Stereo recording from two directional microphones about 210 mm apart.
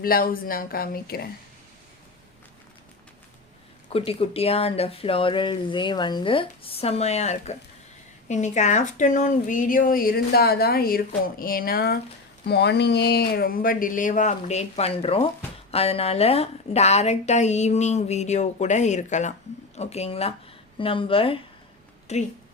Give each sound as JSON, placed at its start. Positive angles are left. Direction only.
{"t": 0.0, "sound": "speech", "side_deg": 45}
{"t": 3.8, "sound": "a woman's voice", "side_deg": 25}